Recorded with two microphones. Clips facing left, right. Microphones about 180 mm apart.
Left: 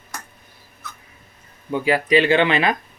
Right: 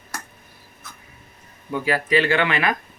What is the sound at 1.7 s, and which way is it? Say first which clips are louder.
Speech: left 3 dB; 20° left (ahead or behind).